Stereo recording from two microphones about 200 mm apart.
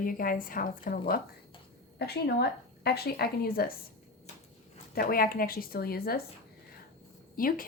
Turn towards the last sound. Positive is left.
turn(degrees=45)  # may be behind; listen again after turning